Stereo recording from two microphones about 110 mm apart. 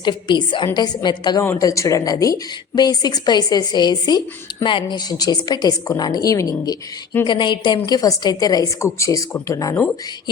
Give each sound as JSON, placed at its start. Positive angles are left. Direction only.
{"t": 0.0, "sound": "a woman's voice", "side_deg": 45}
{"t": 1.4, "sound": "speech", "side_deg": 30}
{"t": 7.3, "sound": "a woman's voice", "side_deg": 45}